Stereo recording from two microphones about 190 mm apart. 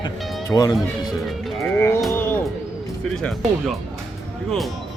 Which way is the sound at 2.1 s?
10° left (ahead or behind).